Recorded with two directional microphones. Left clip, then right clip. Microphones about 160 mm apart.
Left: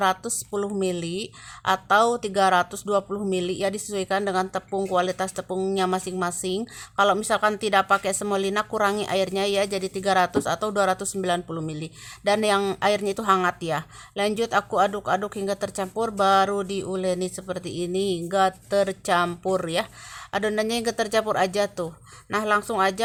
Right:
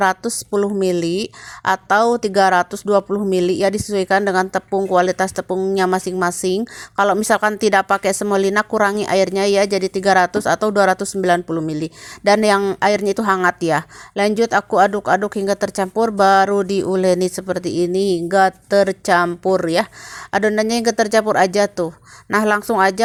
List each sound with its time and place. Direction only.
0.0 s a woman's voice: 30° right (ahead or behind)